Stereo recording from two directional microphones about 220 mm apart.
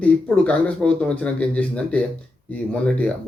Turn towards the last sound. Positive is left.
turn(degrees=5)  # may be behind; listen again after turning